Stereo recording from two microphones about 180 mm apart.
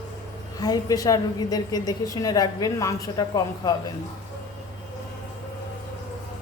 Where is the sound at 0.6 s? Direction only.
20° left (ahead or behind).